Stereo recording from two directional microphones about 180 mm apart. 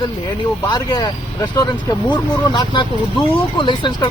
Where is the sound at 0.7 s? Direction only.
25° left (ahead or behind).